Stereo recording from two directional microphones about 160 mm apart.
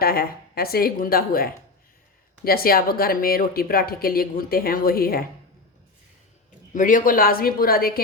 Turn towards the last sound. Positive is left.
turn(degrees=70)  # may be behind; listen again after turning